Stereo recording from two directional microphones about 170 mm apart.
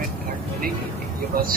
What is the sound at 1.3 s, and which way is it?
Speech, 60° right (ahead or behind).